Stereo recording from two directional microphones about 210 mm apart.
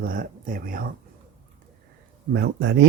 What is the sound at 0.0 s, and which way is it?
Speech, 40° right (ahead or behind).